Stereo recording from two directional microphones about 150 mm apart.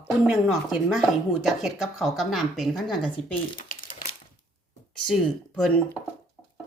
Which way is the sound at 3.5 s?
65° left (ahead or behind).